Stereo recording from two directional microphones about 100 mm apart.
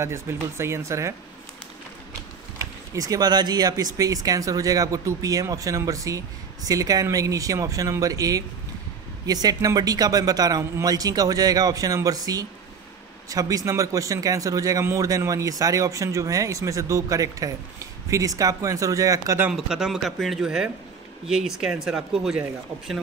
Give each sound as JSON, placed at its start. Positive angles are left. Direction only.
{"t": 0.0, "sound": "speech", "side_deg": -25}
{"t": 2.6, "sound": "speech", "side_deg": -35}
{"t": 19.5, "sound": "speech", "side_deg": -5}